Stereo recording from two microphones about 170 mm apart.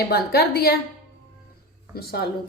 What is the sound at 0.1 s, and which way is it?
Speech, 65° left (ahead or behind).